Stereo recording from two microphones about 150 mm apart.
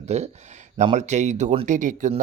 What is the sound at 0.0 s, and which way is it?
Speech, 45° right (ahead or behind).